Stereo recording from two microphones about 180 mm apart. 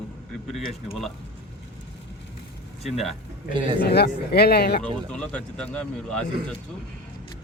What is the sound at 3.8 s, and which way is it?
Speech, 65° left (ahead or behind).